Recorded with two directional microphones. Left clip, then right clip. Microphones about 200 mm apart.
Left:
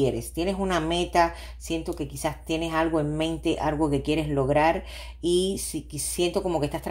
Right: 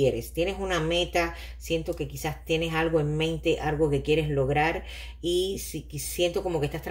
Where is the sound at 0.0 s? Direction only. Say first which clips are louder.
Right 1 dB; 30° left (ahead or behind).